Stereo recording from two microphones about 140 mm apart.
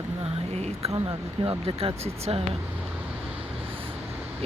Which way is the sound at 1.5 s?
45° right (ahead or behind).